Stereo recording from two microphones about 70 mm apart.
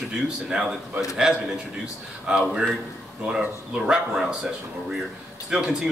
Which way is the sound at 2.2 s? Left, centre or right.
Centre.